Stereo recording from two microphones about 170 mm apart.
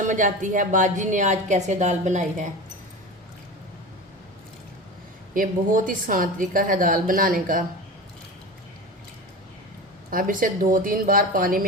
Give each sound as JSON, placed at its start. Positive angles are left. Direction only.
{"t": 0.0, "sound": "a woman's voice", "side_deg": -50}
{"t": 5.3, "sound": "a woman's voice", "side_deg": -55}
{"t": 10.1, "sound": "a woman's voice", "side_deg": -55}